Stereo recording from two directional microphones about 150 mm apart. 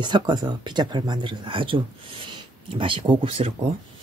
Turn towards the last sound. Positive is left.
turn(degrees=-35)  # may be behind; listen again after turning